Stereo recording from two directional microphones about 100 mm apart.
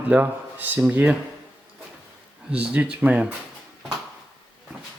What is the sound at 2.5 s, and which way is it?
Speech, 10° right (ahead or behind).